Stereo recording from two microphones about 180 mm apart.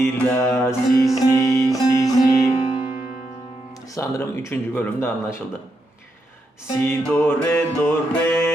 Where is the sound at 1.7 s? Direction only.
20° left (ahead or behind).